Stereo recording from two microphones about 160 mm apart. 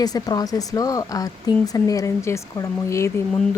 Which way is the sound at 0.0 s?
25° left (ahead or behind).